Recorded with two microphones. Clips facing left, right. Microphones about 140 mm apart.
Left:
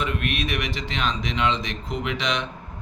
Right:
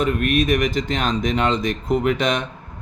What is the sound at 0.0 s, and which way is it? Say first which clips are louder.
Mantra: right 8 dB; 45° right (ahead or behind).